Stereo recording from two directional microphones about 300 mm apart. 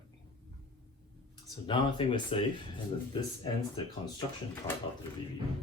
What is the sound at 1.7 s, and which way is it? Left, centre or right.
Speech, centre.